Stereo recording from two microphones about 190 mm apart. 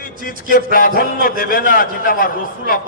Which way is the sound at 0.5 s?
45° left (ahead or behind).